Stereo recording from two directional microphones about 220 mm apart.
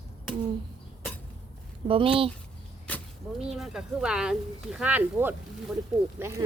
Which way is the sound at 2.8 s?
Centre (ahead or behind).